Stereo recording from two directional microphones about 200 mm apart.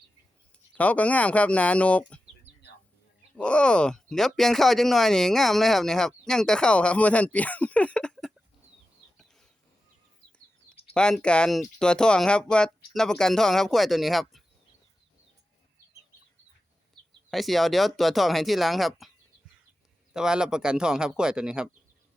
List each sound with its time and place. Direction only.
0.7 s speech: 5° left (ahead or behind)
3.3 s speech: 5° left (ahead or behind)
10.9 s speech: 5° left (ahead or behind)
17.3 s speech: centre (ahead or behind)
20.1 s speech: 5° right (ahead or behind)